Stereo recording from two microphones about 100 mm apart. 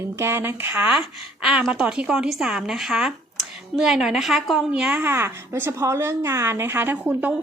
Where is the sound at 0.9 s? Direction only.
10° right (ahead or behind).